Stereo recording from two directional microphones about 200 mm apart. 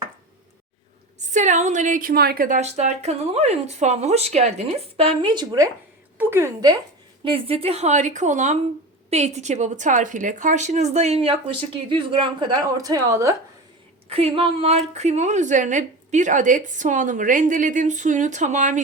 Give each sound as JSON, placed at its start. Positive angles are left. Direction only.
{"t": 1.3, "sound": "a woman's voice", "side_deg": -35}
{"t": 5.0, "sound": "a woman's voice", "side_deg": -25}
{"t": 7.3, "sound": "a woman's voice", "side_deg": -30}
{"t": 14.1, "sound": "a woman's voice", "side_deg": -30}